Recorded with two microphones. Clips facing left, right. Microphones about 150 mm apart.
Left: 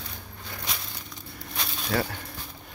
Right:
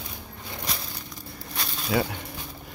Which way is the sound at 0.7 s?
Centre (ahead or behind).